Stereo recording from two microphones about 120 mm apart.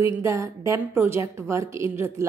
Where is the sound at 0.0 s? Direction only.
25° right (ahead or behind).